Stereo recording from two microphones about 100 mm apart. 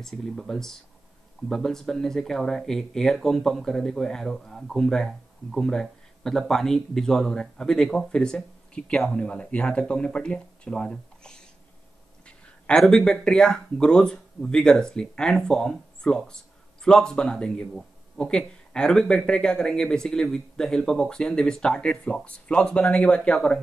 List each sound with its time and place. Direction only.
0.0 s speech: 5° left (ahead or behind)